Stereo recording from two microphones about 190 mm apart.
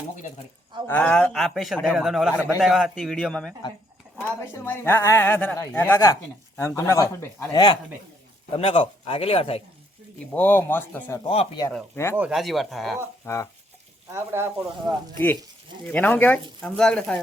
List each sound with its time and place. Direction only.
0.9 s a man's voice: 5° left (ahead or behind); by 9.6 s 30° left (ahead or behind)
10.3 s a woman's voice: 10° left (ahead or behind)
11.3 s speech: 30° left (ahead or behind)
12.1 s a man's voice: 5° right (ahead or behind)
13.2 s a woman's voice: 15° left (ahead or behind)
14.1 s speech: 10° right (ahead or behind)
15.9 s a woman's voice: 10° left (ahead or behind)